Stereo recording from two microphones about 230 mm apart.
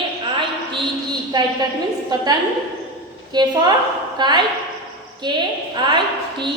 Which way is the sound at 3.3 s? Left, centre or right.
Centre.